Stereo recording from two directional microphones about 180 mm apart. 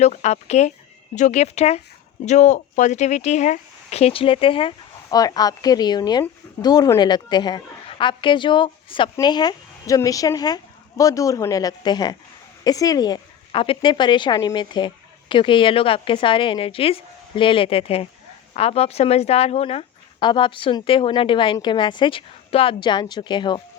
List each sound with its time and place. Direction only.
0.0 s speech: 40° left (ahead or behind)